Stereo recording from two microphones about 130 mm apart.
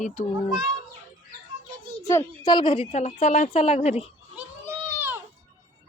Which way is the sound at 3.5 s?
50° left (ahead or behind).